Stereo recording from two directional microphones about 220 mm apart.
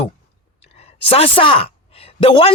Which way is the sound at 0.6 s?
25° left (ahead or behind).